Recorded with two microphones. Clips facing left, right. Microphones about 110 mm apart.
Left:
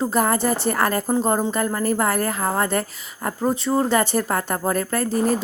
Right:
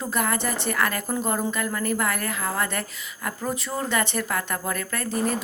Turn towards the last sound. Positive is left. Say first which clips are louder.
# left 6 dB
turn(degrees=35)  # may be behind; listen again after turning